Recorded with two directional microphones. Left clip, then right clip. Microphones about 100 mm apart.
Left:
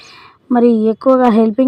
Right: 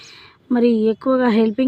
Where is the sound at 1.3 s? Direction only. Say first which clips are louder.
Left 5 dB; 35° left (ahead or behind).